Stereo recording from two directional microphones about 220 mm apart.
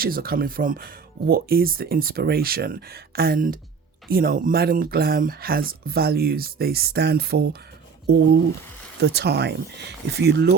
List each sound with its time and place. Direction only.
0.0 s speech: 40° right (ahead or behind)
9.0 s speech: 50° right (ahead or behind)